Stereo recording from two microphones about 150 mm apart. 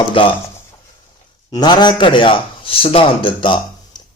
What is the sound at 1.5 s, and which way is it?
A man's voice, 30° left (ahead or behind).